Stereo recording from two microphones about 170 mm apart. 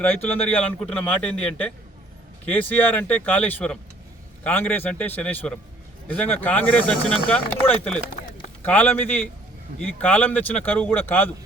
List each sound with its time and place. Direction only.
0.0 s a man's voice: 10° left (ahead or behind)